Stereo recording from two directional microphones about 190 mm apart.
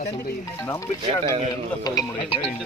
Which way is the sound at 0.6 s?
15° left (ahead or behind).